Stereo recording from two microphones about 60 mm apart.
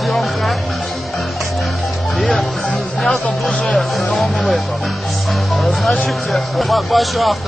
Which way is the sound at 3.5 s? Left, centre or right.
Left.